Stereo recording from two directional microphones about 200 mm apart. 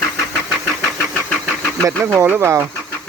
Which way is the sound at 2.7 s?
10° left (ahead or behind).